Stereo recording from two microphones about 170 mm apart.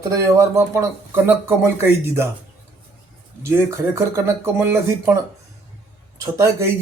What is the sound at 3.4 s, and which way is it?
Speech, 15° right (ahead or behind).